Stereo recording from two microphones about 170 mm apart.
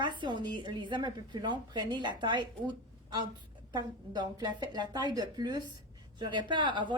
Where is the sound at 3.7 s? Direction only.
25° right (ahead or behind).